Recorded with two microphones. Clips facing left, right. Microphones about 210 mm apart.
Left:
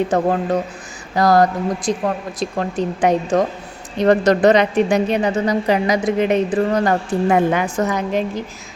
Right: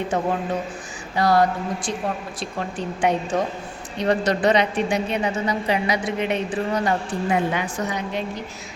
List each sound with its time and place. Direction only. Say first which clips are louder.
0.1 s a woman's voice: left 6 dB; 40° left (ahead or behind)